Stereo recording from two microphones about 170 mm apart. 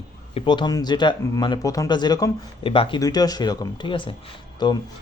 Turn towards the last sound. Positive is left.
turn(degrees=25)  # may be behind; listen again after turning